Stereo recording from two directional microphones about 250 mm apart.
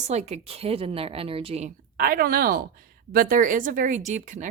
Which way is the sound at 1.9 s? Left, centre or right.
Right.